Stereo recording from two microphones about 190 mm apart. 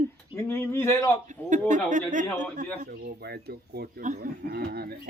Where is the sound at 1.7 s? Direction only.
40° right (ahead or behind).